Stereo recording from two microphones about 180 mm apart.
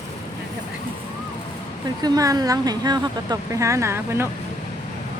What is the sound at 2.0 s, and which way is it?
Speech, 20° right (ahead or behind).